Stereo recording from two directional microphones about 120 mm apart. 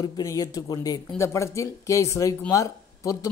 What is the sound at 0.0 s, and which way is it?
Speech, 30° left (ahead or behind).